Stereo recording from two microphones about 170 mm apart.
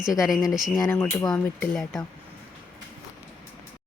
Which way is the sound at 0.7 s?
15° left (ahead or behind).